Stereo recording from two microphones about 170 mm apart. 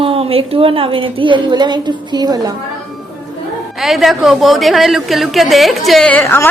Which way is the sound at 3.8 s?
Centre (ahead or behind).